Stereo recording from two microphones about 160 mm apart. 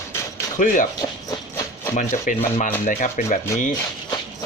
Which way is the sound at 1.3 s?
20° left (ahead or behind).